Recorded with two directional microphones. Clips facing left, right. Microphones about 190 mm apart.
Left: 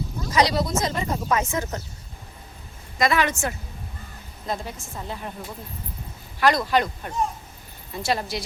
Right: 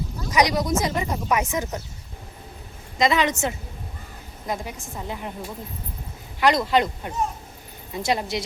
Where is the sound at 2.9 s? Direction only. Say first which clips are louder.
Right 1 dB; 20° right (ahead or behind).